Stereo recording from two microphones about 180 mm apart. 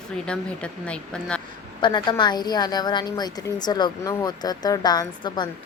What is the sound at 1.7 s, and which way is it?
A woman's voice, 25° left (ahead or behind).